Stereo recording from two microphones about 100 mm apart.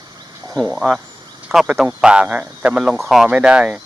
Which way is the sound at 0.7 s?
5° right (ahead or behind).